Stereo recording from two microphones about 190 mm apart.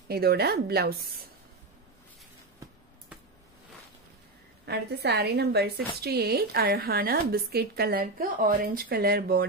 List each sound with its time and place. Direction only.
0.1 s a woman's voice: 55° right (ahead or behind)
4.6 s a woman's voice: 60° right (ahead or behind)